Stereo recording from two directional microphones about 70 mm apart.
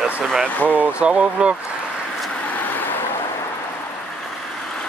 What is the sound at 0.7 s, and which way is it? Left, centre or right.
Speech, centre.